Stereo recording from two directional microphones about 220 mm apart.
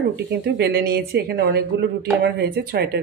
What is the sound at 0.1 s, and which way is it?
A woman's voice, 50° right (ahead or behind).